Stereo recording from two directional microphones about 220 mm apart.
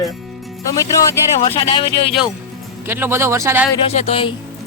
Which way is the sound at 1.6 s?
25° left (ahead or behind).